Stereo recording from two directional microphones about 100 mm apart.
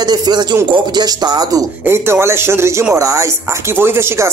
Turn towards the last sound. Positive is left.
turn(degrees=-25)  # may be behind; listen again after turning